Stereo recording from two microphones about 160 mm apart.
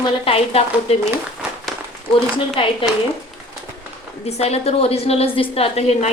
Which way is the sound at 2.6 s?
30° left (ahead or behind).